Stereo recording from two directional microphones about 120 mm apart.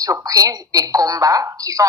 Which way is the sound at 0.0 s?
30° right (ahead or behind).